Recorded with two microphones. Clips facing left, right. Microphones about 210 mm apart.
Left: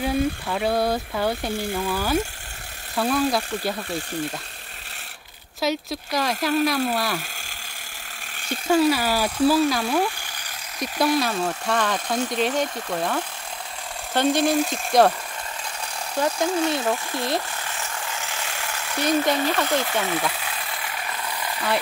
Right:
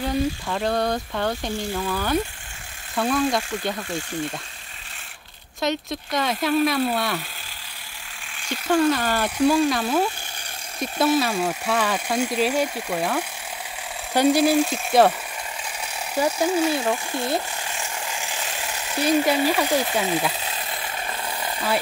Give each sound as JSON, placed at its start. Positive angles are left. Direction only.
{"t": 0.0, "sound": "speech", "side_deg": 5}
{"t": 5.6, "sound": "speech", "side_deg": 5}
{"t": 8.6, "sound": "speech", "side_deg": 10}
{"t": 16.2, "sound": "speech", "side_deg": -10}
{"t": 17.6, "sound": "jackhammer", "side_deg": -15}
{"t": 19.1, "sound": "speech", "side_deg": -10}